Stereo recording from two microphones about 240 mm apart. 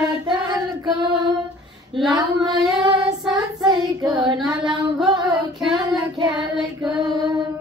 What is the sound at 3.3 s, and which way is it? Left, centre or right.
Child singing, centre.